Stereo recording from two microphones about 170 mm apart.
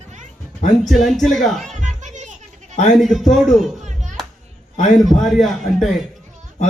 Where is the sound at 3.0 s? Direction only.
Centre (ahead or behind).